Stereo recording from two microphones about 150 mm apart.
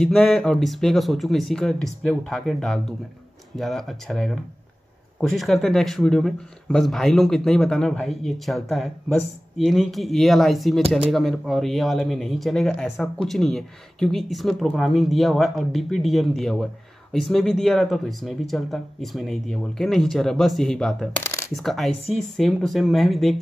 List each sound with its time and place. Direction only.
0.0 s speech: 5° left (ahead or behind)
21.2 s shuffling cards: 20° left (ahead or behind)
21.5 s speech: centre (ahead or behind)